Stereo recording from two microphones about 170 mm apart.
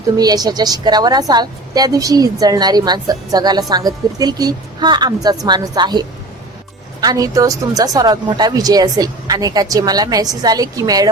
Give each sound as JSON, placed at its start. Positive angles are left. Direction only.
{"t": 0.2, "sound": "a woman's voice", "side_deg": -25}